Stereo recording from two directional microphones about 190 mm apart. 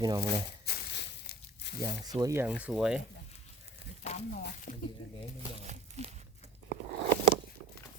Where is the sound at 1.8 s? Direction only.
20° right (ahead or behind); by 3.0 s 5° right (ahead or behind).